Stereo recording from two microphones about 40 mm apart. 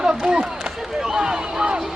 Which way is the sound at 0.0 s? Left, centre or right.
Centre.